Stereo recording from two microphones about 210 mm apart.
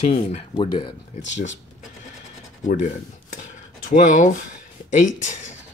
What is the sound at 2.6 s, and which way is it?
Speech, 35° left (ahead or behind).